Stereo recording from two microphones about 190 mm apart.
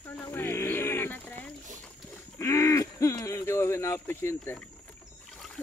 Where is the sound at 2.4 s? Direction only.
15° left (ahead or behind).